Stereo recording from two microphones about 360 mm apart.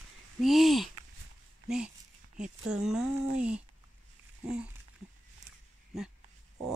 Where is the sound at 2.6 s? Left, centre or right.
Centre.